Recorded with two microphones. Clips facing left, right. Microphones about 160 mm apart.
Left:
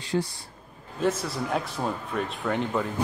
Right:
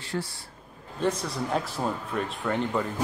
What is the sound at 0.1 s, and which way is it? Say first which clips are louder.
Speech: left 5 dB; 20° left (ahead or behind).